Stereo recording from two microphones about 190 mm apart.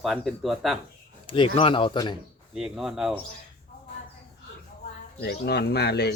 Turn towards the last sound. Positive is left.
turn(degrees=60)  # may be behind; listen again after turning